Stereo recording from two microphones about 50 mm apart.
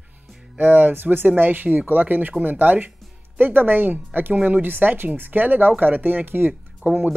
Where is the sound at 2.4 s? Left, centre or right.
Right.